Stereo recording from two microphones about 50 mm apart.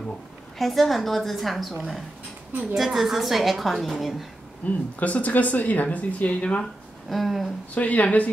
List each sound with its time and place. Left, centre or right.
0.6 s a woman's voice: centre
4.6 s speech: left
6.6 s speech: centre
7.7 s speech: left